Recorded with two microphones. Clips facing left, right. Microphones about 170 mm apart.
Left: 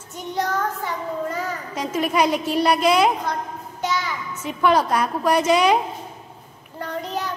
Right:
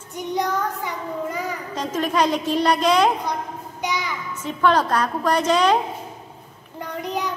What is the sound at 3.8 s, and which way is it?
Child singing, 15° right (ahead or behind).